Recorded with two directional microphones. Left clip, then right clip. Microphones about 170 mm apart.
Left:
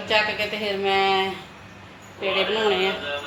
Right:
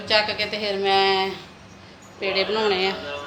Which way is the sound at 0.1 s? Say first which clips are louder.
Right 1 dB; centre (ahead or behind).